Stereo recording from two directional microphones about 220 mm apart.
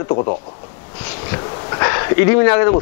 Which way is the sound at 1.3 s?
20° left (ahead or behind).